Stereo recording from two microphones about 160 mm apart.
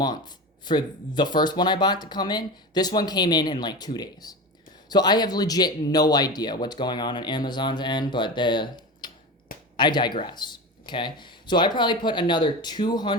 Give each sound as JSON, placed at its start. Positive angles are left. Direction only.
{"t": 0.0, "sound": "speech", "side_deg": 25}